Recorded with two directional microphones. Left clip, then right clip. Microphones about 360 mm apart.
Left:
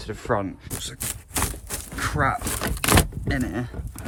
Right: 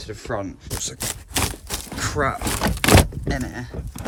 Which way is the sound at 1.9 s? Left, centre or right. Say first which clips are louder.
Even; centre.